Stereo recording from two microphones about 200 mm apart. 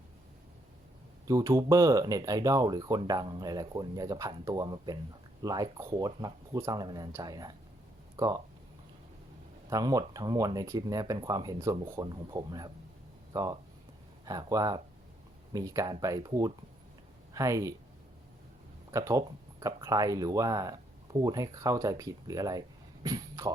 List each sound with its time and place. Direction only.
1.3 s speech: 15° right (ahead or behind)
9.6 s speech: 15° right (ahead or behind)
18.9 s speech: 15° right (ahead or behind)